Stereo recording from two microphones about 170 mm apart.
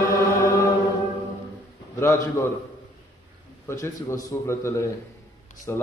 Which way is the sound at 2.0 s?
15° left (ahead or behind).